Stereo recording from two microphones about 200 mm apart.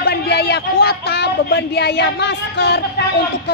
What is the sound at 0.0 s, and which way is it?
A woman's voice, 55° left (ahead or behind).